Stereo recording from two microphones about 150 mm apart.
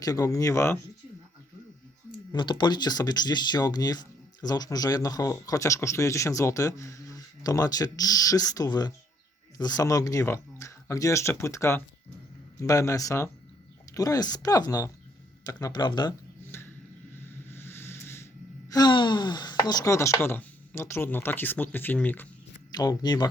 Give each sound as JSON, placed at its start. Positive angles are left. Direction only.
{"t": 0.0, "sound": "speech", "side_deg": 25}
{"t": 2.3, "sound": "speech", "side_deg": 30}
{"t": 16.5, "sound": "a sound", "side_deg": 15}
{"t": 17.5, "sound": "vehicle", "side_deg": 15}
{"t": 18.7, "sound": "speech", "side_deg": 30}
{"t": 22.7, "sound": "speech", "side_deg": 25}